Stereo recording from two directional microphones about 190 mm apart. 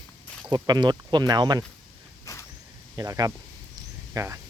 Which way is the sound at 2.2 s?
15° left (ahead or behind).